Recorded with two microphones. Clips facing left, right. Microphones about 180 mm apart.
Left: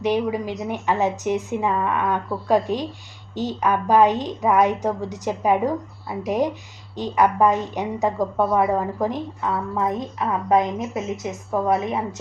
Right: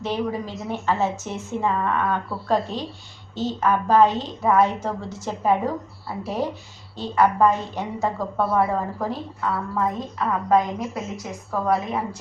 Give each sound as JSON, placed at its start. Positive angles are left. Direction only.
{"t": 0.0, "sound": "a woman's voice", "side_deg": 15}